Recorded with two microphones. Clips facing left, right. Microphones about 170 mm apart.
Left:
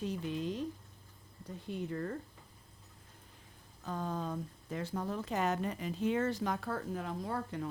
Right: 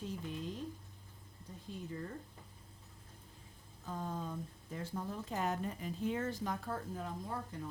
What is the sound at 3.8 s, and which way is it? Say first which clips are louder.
A woman's voice: left 4 dB; 80° left.